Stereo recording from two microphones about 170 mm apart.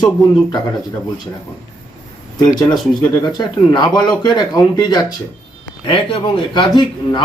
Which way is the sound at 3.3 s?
25° left (ahead or behind).